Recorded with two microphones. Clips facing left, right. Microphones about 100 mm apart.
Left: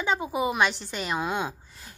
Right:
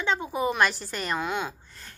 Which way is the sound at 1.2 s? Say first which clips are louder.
Left 3 dB; 20° left (ahead or behind).